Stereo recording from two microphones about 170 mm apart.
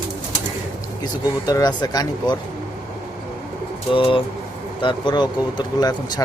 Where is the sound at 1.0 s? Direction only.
25° left (ahead or behind).